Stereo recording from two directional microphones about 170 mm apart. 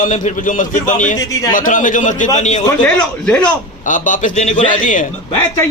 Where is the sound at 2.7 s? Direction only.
5° left (ahead or behind).